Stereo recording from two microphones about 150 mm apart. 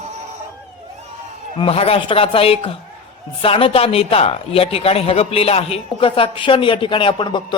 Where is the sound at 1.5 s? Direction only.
40° left (ahead or behind).